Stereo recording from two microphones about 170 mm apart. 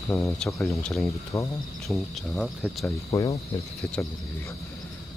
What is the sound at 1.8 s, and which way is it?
Cricket, centre (ahead or behind).